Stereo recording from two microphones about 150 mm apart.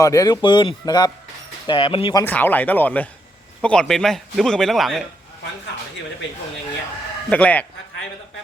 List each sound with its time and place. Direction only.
0.0 s a man's voice: 20° left (ahead or behind)
2.2 s a man's voice: 10° left (ahead or behind)
7.3 s speech: 10° left (ahead or behind)